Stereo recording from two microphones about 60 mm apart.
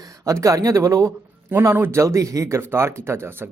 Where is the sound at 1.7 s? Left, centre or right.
Right.